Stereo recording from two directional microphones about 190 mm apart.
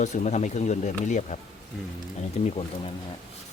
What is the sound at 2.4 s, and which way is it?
Speech, 35° left (ahead or behind).